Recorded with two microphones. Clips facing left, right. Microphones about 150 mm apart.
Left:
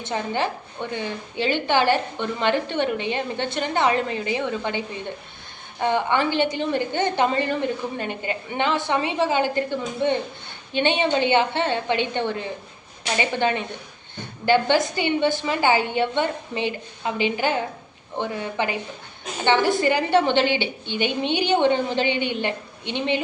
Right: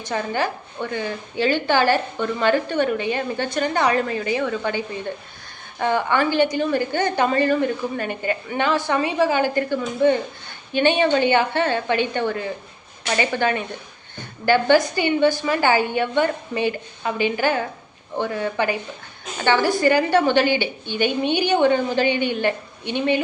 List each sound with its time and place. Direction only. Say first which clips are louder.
0.0 s a woman's voice: right 1 dB; 25° left (ahead or behind)
5.8 s a woman's voice: right 1 dB; 20° left (ahead or behind)